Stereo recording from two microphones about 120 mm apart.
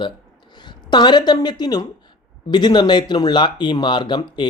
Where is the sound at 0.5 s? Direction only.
40° left (ahead or behind).